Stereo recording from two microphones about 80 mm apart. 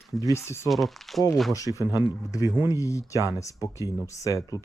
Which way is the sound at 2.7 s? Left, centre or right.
Left.